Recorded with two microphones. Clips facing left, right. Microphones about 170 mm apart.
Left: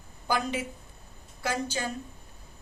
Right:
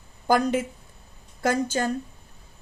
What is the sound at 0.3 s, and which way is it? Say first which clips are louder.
Speech: right 8 dB; 50° right (ahead or behind).